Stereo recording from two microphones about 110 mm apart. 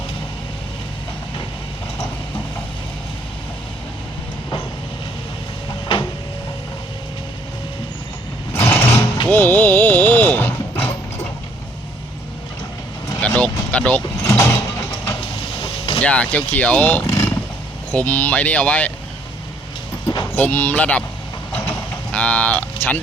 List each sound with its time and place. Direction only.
8.5 s vehicle: 20° left (ahead or behind)
9.2 s a sound: 20° left (ahead or behind)
13.2 s vehicle: 10° left (ahead or behind)
14.2 s mechanisms: 30° left (ahead or behind)
15.5 s vehicle: 55° left (ahead or behind)
16.0 s speech: 10° left (ahead or behind)
20.3 s speech: 15° left (ahead or behind)
21.5 s vehicle: 20° left (ahead or behind)